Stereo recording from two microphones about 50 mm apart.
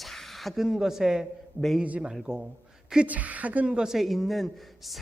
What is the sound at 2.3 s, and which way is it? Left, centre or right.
Speech, centre.